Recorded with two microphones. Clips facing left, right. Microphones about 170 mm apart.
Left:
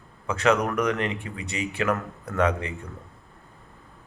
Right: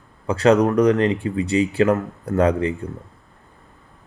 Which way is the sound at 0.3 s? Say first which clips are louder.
Right 7 dB; 35° right (ahead or behind).